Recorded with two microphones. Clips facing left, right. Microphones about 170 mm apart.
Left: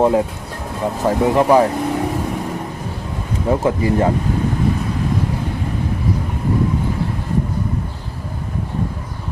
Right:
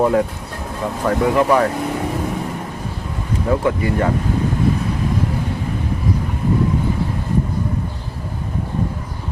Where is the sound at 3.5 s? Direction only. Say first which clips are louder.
Left 2 dB; 30° left (ahead or behind).